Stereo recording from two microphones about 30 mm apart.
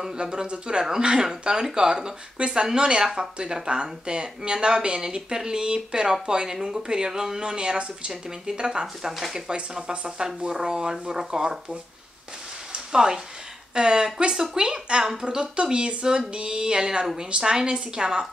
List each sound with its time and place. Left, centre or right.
0.2 s speech: right
12.9 s speech: right